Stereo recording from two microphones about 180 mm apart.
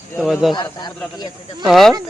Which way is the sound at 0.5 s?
20° left (ahead or behind).